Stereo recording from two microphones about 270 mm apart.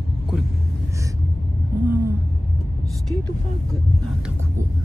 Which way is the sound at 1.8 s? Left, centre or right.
Right.